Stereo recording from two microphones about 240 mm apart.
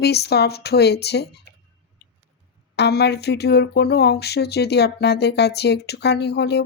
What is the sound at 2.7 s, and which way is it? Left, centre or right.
Speech, left.